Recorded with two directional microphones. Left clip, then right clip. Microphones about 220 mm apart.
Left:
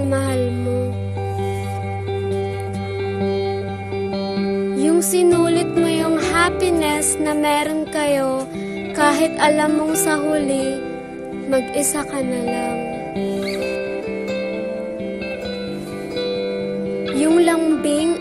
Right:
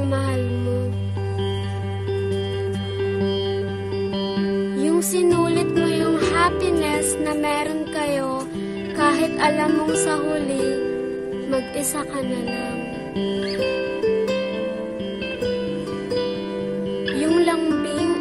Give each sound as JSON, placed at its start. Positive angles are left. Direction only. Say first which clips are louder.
{"t": 4.7, "sound": "music", "louder": "left 5 dB", "side_deg": 15}
{"t": 17.2, "sound": "music", "louder": "left 4 dB", "side_deg": 15}